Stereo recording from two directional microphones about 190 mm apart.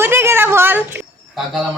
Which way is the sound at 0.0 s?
15° right (ahead or behind).